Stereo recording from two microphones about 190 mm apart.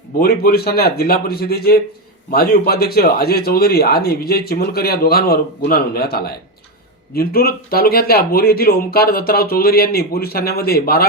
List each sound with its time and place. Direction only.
0.2 s speech: 50° left (ahead or behind)